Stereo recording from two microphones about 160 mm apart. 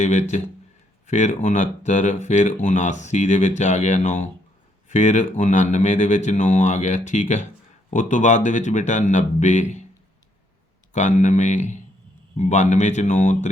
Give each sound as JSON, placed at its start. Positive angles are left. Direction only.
{"t": 0.0, "sound": "speech", "side_deg": 45}
{"t": 10.9, "sound": "speech", "side_deg": 50}